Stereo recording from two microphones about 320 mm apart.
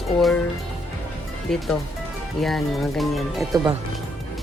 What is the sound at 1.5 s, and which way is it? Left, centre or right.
Speech, centre.